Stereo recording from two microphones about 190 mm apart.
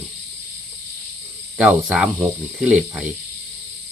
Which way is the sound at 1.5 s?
5° right (ahead or behind).